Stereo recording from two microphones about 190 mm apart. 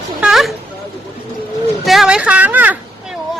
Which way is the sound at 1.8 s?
5° right (ahead or behind).